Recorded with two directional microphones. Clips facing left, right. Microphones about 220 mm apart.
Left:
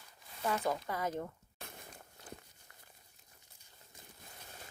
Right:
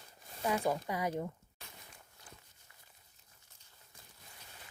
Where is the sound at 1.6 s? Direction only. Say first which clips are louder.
Left 6 dB; 50° left (ahead or behind).